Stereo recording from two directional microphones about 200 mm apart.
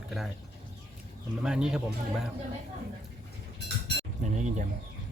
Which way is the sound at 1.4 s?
5° right (ahead or behind).